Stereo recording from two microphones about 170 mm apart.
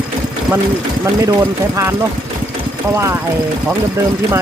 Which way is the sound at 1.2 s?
20° right (ahead or behind).